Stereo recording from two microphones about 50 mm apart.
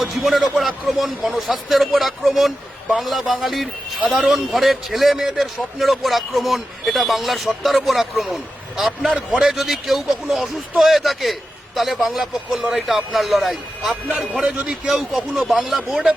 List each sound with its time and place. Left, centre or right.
0.0 s a man's voice: centre
9.4 s a man's voice: centre
14.4 s a man's voice: right
14.8 s speech: centre